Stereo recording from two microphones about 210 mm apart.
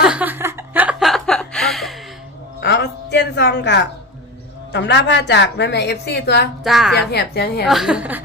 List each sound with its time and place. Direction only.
0.0 s chuckle: 5° right (ahead or behind)
2.6 s music: 55° left (ahead or behind)
4.7 s a woman's voice: 55° left (ahead or behind)
6.7 s a woman's voice: centre (ahead or behind)
6.9 s a woman's voice: 50° left (ahead or behind)
7.6 s a woman's voice: centre (ahead or behind)